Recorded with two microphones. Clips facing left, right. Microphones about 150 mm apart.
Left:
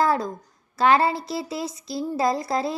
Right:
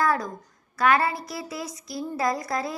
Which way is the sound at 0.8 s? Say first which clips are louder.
Left 3 dB; 25° left (ahead or behind).